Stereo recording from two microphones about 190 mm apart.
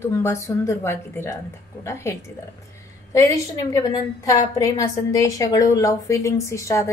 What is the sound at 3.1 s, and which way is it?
A woman's voice, 15° left (ahead or behind).